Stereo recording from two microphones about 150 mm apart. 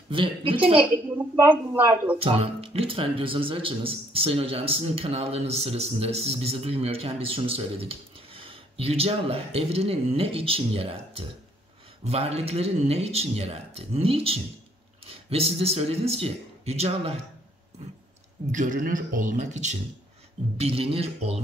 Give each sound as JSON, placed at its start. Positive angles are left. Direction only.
{"t": 0.1, "sound": "speech", "side_deg": -35}
{"t": 1.5, "sound": "a woman's voice", "side_deg": -15}
{"t": 2.1, "sound": "speech", "side_deg": -40}
{"t": 18.5, "sound": "speech", "side_deg": -60}
{"t": 20.5, "sound": "speech", "side_deg": -40}